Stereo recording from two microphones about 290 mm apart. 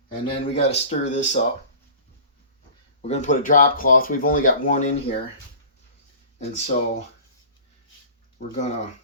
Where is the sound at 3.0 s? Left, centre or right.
Left.